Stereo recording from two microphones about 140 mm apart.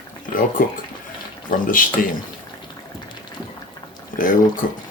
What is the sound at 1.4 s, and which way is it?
Speech, 80° left.